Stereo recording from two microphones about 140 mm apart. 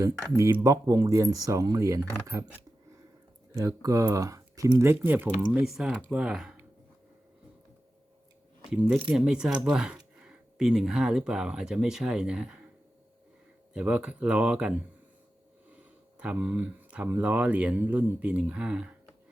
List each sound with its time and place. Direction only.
0.0 s speech: 20° right (ahead or behind)
3.6 s speech: 25° right (ahead or behind)
5.6 s speech: 5° right (ahead or behind)
8.7 s speech: 10° right (ahead or behind)
13.7 s speech: 10° right (ahead or behind)
15.7 s speech: 10° right (ahead or behind)